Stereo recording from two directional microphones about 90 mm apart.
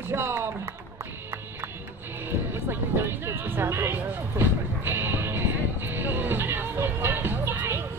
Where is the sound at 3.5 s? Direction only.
25° right (ahead or behind).